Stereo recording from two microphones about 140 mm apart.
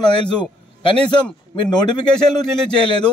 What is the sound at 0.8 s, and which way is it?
Speech, 35° left (ahead or behind).